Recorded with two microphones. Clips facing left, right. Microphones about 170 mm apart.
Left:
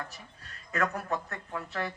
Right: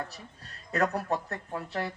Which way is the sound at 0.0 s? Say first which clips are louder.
Right 3 dB; 35° right (ahead or behind).